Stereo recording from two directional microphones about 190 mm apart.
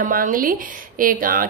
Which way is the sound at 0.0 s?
45° right (ahead or behind).